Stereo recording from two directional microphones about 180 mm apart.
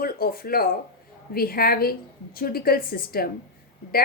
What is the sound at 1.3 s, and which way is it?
A woman's voice, 55° left (ahead or behind).